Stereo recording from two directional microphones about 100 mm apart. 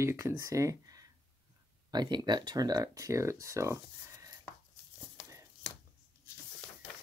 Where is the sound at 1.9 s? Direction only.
45° right (ahead or behind).